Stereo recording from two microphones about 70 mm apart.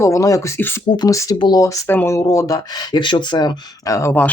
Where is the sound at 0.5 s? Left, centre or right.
Left.